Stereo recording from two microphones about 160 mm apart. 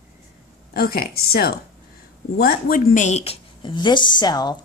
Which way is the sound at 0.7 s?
70° left (ahead or behind).